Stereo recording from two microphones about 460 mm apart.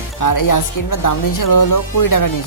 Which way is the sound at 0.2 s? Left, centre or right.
Left.